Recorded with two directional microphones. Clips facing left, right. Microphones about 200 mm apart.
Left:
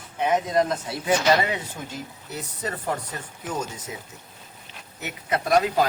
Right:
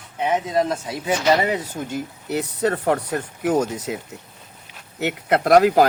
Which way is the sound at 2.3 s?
70° right (ahead or behind).